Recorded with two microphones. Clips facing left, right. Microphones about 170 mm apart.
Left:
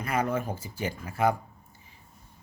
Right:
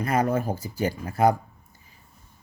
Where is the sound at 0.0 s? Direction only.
40° right (ahead or behind).